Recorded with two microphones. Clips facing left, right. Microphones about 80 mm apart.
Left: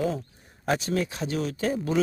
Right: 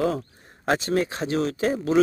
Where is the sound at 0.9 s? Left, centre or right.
Right.